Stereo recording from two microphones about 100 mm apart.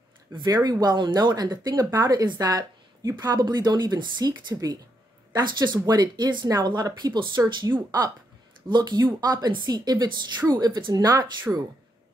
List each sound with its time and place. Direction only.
0.3 s a woman's voice: 40° right (ahead or behind)